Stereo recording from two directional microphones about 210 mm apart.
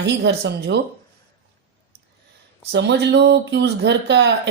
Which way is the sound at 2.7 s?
55° right (ahead or behind).